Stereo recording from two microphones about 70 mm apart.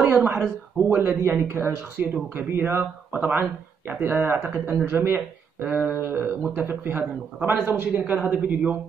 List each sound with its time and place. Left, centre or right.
0.0 s speech: right
2.0 s speech: right
2.3 s speech: right
7.9 s speech: right